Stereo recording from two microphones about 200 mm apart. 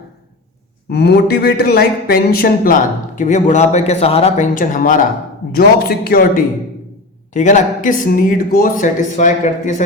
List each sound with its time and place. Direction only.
0.9 s speech: 55° left (ahead or behind)
7.3 s speech: 35° left (ahead or behind)